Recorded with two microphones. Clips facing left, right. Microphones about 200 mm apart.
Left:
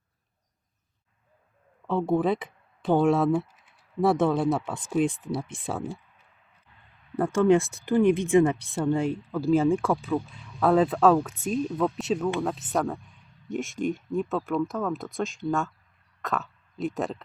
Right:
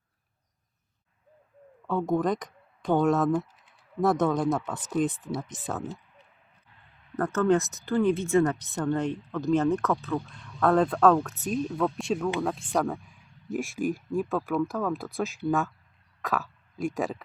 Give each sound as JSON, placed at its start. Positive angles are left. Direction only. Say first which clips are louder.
{"t": 2.0, "sound": "speech", "louder": "left 2 dB", "side_deg": 5}
{"t": 7.2, "sound": "speech", "louder": "left 3 dB", "side_deg": 10}